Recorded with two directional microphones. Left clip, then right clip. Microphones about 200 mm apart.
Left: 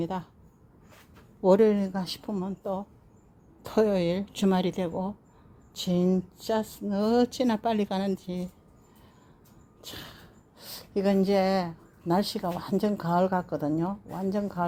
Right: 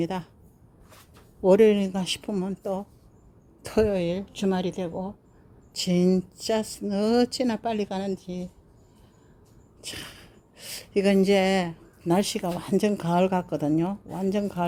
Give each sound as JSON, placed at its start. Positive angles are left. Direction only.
{"t": 0.0, "sound": "speech", "side_deg": -15}
{"t": 1.4, "sound": "a woman's voice", "side_deg": -15}
{"t": 3.8, "sound": "speech", "side_deg": 5}
{"t": 6.0, "sound": "speech", "side_deg": -15}
{"t": 7.3, "sound": "speech", "side_deg": 0}
{"t": 10.6, "sound": "a woman's voice", "side_deg": -20}